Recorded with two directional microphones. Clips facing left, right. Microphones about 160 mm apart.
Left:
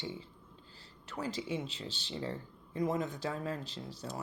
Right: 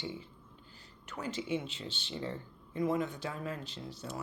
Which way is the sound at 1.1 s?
35° left (ahead or behind).